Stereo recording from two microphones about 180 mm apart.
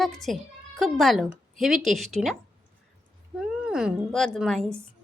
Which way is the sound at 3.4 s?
5° right (ahead or behind).